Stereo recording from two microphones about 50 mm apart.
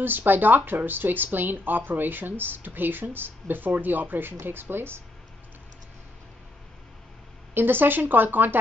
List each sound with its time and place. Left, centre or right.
0.0 s speech: right
7.5 s speech: right